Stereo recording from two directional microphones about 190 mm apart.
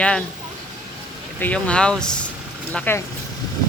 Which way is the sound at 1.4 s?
10° left (ahead or behind).